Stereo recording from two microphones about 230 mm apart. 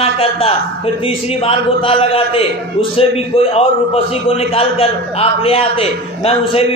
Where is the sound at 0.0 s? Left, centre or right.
Left.